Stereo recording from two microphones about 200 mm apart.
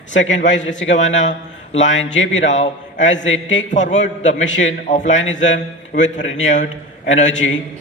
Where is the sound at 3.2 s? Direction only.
70° left (ahead or behind).